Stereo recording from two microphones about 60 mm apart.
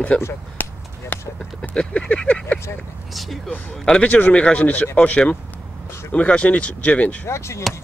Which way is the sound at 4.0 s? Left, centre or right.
Left.